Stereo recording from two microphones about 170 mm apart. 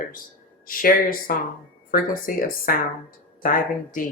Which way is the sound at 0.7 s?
55° left (ahead or behind).